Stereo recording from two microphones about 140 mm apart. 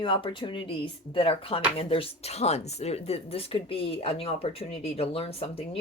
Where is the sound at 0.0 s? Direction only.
35° left (ahead or behind).